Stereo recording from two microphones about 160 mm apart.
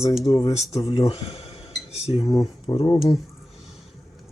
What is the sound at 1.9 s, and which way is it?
Cutlery, 40° left (ahead or behind).